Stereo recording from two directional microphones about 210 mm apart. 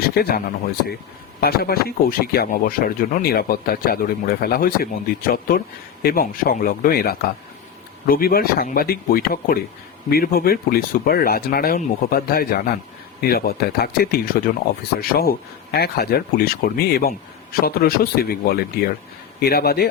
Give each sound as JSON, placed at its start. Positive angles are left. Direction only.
{"t": 0.1, "sound": "speech", "side_deg": 45}